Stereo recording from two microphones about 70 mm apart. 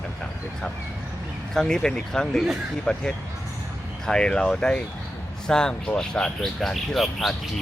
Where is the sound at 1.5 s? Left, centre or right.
Centre.